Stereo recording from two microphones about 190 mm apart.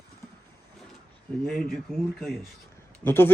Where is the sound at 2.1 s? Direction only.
Centre (ahead or behind).